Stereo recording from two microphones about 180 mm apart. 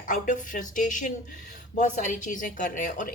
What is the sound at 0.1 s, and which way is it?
A woman's voice, 45° left (ahead or behind).